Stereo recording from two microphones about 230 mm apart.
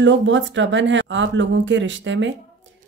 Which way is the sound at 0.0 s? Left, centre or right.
Right.